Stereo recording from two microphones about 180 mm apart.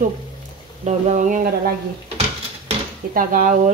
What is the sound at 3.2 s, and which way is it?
Dishes, 50° right (ahead or behind).